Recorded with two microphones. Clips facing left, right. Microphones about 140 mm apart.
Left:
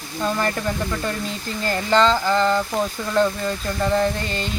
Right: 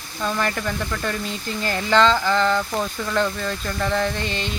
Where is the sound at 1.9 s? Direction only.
5° left (ahead or behind).